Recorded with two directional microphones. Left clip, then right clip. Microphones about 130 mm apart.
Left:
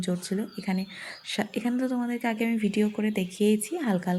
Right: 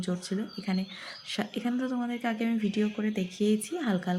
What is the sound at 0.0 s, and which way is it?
A woman's voice, 20° left (ahead or behind).